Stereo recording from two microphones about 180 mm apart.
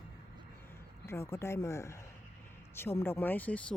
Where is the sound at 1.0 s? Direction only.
15° left (ahead or behind).